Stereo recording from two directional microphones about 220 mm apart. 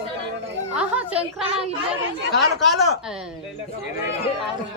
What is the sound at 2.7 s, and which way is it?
Speech, centre (ahead or behind).